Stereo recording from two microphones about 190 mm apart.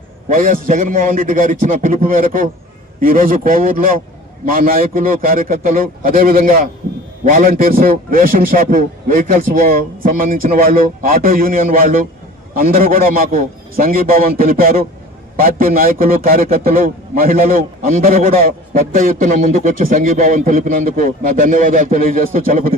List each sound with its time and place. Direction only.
0.3 s a man's voice: 45° right (ahead or behind)